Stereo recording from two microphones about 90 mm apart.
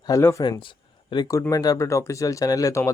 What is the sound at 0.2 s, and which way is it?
Speech, 25° left (ahead or behind).